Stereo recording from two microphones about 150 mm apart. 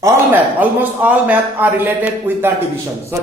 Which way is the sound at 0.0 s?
15° right (ahead or behind).